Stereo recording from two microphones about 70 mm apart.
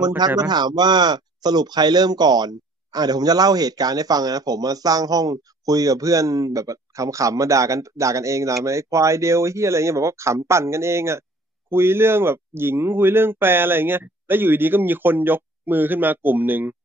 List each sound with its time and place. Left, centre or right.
0.4 s speech: right